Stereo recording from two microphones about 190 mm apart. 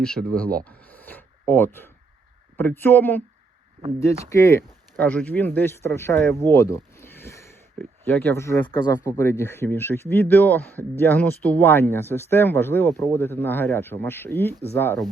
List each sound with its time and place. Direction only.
0.0 s speech: 5° left (ahead or behind)
8.6 s speech: 25° left (ahead or behind)